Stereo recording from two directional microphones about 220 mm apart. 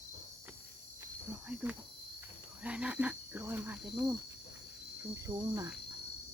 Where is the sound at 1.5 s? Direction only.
5° right (ahead or behind).